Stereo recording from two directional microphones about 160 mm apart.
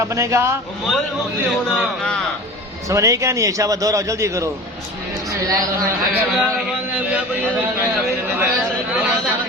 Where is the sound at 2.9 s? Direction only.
20° right (ahead or behind).